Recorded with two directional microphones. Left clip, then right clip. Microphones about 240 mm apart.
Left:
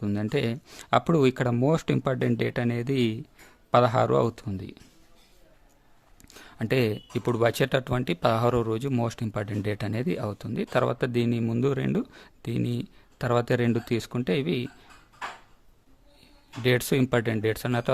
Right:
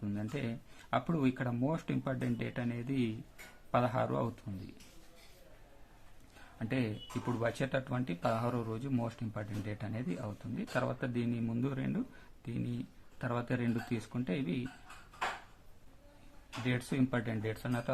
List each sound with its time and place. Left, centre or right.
0.0 s speech: left
6.6 s speech: left
16.6 s speech: left